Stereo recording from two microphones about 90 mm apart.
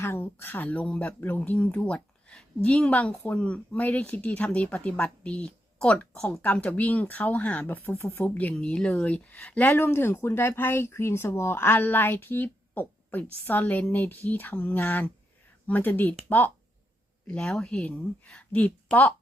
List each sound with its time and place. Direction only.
0.0 s a woman's voice: 25° left (ahead or behind)
17.2 s speech: 10° left (ahead or behind)